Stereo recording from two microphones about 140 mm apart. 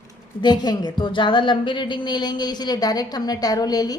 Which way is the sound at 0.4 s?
30° left (ahead or behind).